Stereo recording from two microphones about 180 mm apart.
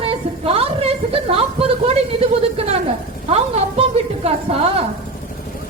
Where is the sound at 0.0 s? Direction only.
30° right (ahead or behind).